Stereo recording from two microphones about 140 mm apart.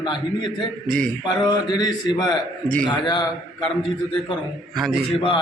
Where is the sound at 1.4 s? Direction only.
30° left (ahead or behind).